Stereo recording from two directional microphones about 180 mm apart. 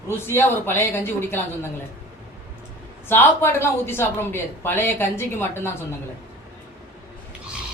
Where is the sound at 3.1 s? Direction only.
10° left (ahead or behind).